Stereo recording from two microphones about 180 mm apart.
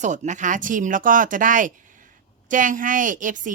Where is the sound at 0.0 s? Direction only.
40° right (ahead or behind).